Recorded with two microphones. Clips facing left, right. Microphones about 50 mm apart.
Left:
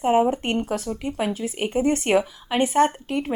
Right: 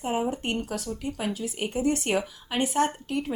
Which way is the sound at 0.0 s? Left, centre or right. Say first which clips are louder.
Left 8 dB; left.